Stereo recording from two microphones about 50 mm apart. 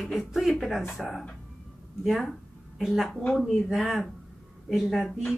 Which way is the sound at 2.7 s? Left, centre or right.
Centre.